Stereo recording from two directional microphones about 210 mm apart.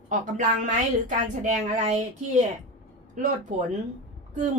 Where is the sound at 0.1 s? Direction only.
35° right (ahead or behind).